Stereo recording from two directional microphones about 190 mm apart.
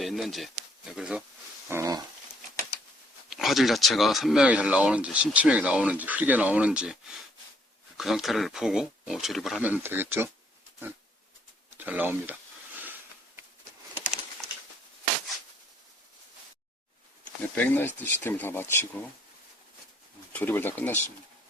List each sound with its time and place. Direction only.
0.0 s speech: centre (ahead or behind)
1.7 s speech: 20° right (ahead or behind)
3.2 s speech: centre (ahead or behind)
7.9 s speech: centre (ahead or behind)
11.8 s speech: 10° right (ahead or behind)
17.5 s speech: 10° left (ahead or behind)
20.3 s speech: 10° left (ahead or behind)